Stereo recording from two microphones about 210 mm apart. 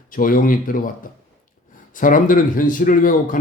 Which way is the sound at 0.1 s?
40° left (ahead or behind).